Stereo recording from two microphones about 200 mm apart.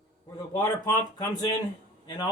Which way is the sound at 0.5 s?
20° left (ahead or behind).